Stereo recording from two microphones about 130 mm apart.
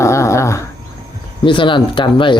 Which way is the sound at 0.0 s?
20° left (ahead or behind).